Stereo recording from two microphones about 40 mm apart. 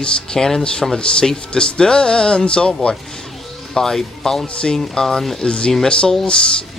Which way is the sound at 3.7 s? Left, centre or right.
Centre.